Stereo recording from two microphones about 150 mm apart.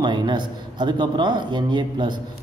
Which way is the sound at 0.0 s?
30° right (ahead or behind).